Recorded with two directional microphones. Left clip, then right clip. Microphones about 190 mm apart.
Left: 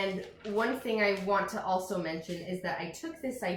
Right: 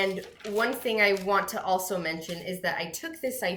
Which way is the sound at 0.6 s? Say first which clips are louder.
Right 5 dB; 10° right (ahead or behind).